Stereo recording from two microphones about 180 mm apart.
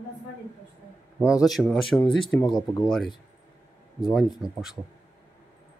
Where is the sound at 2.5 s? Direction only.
25° left (ahead or behind).